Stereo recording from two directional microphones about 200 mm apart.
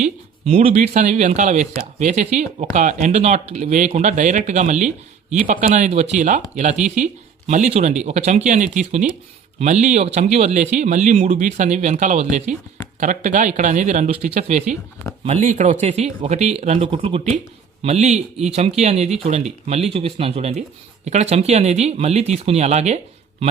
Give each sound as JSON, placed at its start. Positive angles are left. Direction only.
{"t": 0.0, "sound": "speech", "side_deg": -30}